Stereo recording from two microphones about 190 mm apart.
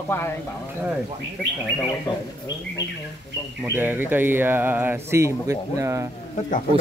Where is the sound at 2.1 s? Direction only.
20° left (ahead or behind).